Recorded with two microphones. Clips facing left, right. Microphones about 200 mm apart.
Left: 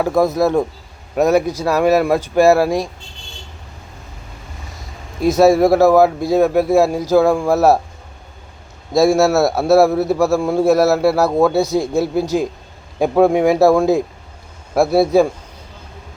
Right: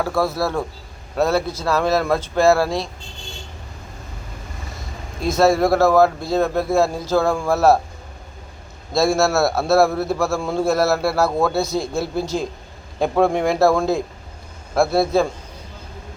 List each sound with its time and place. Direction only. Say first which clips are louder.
0.0 s a man's voice: left 6 dB; 20° left (ahead or behind)
5.4 s a man's voice: left 4 dB; 10° left (ahead or behind)
8.9 s a man's voice: left 5 dB; 15° left (ahead or behind)